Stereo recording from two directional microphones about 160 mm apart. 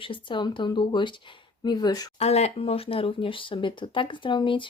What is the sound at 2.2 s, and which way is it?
Speech, 40° left (ahead or behind).